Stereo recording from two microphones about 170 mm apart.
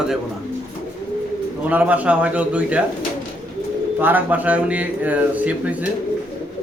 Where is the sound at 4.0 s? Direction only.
10° right (ahead or behind).